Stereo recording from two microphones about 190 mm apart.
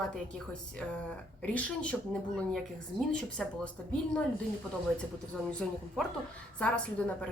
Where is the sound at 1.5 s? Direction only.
5° left (ahead or behind).